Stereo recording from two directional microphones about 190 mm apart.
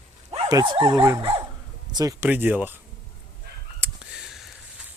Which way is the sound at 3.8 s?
5° right (ahead or behind).